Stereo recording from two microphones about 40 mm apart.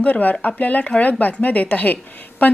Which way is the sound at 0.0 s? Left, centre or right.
Left.